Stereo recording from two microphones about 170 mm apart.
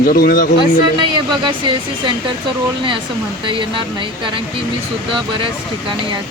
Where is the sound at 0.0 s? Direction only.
60° left (ahead or behind).